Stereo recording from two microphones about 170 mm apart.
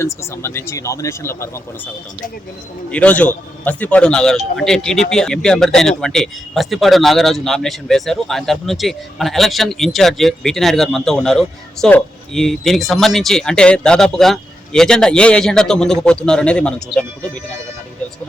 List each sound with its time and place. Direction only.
0.0 s speech: 15° left (ahead or behind)
2.9 s speech: 5° left (ahead or behind)